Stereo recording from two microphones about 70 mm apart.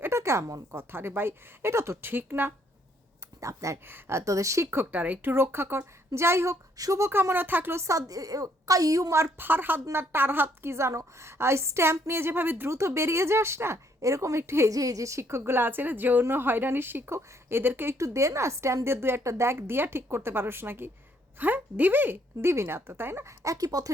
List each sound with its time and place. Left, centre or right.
0.0 s a sound: right
0.7 s a woman's voice: right
3.4 s a woman's voice: right
3.8 s a woman's voice: right
4.2 s a woman's voice: right
4.9 s a woman's voice: right
5.3 s a woman's voice: right
6.7 s a woman's voice: right
7.1 s a woman's voice: right
7.8 s a woman's voice: right
9.2 s a woman's voice: right
14.7 s a woman's voice: right
17.9 s a woman's voice: right